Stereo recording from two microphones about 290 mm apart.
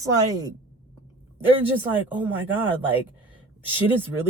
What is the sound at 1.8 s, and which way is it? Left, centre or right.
A woman's voice, centre.